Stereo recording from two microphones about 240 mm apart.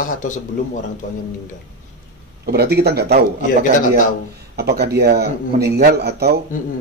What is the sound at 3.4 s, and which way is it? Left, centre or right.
Speech, left.